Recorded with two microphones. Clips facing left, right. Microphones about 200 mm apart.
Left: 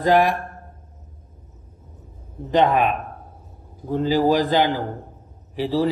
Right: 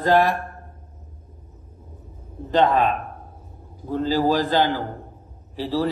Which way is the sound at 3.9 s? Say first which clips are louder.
Left 2 dB; 15° left (ahead or behind).